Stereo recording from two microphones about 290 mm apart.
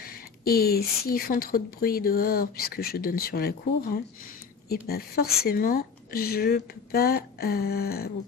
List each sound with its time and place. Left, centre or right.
0.0 s speech: left